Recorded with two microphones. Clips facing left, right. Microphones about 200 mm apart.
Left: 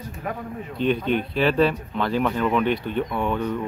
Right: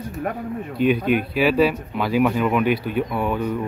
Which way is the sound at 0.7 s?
10° right (ahead or behind).